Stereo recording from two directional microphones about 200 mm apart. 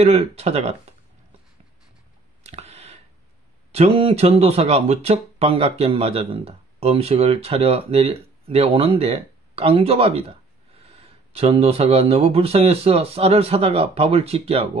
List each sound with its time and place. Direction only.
0.0 s speech: 30° right (ahead or behind)
2.4 s a sound: 30° right (ahead or behind)
3.7 s speech: 30° right (ahead or behind)